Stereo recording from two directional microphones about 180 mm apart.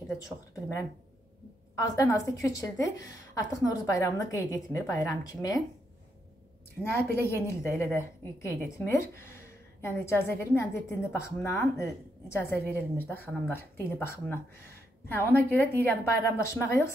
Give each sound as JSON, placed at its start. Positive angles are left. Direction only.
{"t": 1.8, "sound": "a woman's voice", "side_deg": 20}
{"t": 6.8, "sound": "a woman's voice", "side_deg": 15}